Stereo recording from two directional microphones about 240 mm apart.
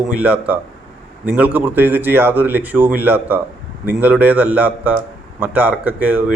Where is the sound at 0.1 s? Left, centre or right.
Centre.